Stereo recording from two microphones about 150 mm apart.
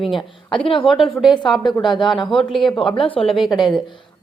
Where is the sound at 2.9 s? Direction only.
35° left (ahead or behind).